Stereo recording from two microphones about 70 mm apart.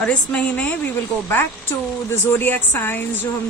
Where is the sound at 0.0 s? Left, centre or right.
Centre.